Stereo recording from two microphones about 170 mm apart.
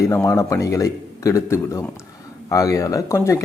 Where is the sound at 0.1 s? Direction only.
20° left (ahead or behind).